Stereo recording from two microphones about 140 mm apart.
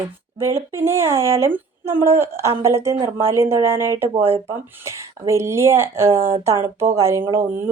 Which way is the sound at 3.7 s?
25° left (ahead or behind).